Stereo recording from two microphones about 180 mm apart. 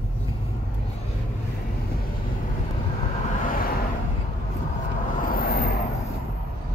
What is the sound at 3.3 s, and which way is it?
Vehicle, 50° left (ahead or behind).